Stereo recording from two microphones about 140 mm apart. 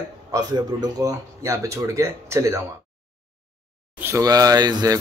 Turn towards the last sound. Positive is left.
turn(degrees=-30)  # may be behind; listen again after turning